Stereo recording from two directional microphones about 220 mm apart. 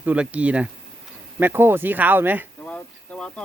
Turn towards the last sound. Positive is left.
turn(degrees=5)  # may be behind; listen again after turning